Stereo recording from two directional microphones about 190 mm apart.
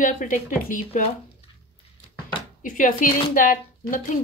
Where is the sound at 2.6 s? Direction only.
45° left (ahead or behind).